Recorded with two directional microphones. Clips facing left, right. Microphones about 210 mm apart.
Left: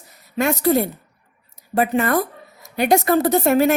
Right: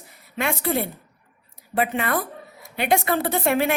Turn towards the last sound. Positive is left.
turn(degrees=40)  # may be behind; listen again after turning